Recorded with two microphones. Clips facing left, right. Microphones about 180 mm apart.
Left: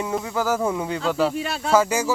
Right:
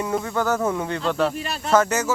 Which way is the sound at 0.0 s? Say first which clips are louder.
Right 1 dB; 5° left (ahead or behind).